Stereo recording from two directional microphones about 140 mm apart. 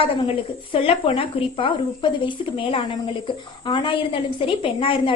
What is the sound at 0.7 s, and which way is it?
A woman's voice, 45° left (ahead or behind).